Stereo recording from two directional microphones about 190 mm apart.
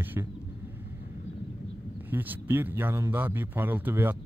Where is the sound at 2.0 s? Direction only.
10° right (ahead or behind).